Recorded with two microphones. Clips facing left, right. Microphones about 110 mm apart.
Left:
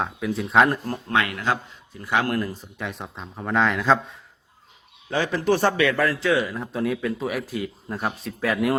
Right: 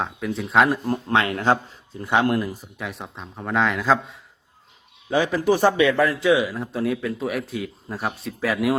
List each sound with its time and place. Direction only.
0.0 s speech: centre (ahead or behind)
0.9 s speech: 25° right (ahead or behind); by 4.2 s centre (ahead or behind)
5.1 s a man's voice: 10° right (ahead or behind)
6.5 s speech: centre (ahead or behind)